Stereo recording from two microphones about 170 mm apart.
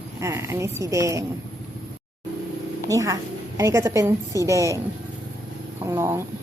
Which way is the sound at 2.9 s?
20° right (ahead or behind).